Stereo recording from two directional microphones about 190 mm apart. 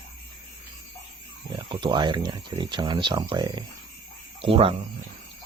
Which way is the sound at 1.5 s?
25° right (ahead or behind).